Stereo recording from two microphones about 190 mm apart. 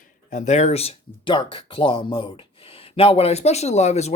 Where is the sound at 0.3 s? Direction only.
40° left (ahead or behind).